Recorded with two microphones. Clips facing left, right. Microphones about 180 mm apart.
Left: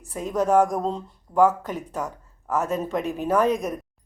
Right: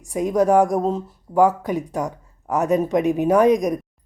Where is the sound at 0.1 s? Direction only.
10° right (ahead or behind).